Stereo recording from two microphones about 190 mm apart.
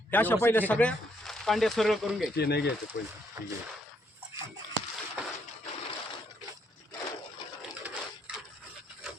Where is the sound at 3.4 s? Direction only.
15° right (ahead or behind).